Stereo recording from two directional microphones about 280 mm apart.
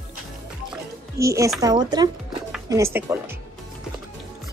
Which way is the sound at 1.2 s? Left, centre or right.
Centre.